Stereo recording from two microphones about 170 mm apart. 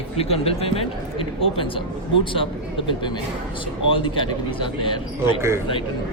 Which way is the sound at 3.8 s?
30° left (ahead or behind).